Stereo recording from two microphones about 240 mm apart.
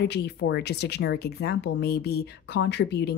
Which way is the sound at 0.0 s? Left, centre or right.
Left.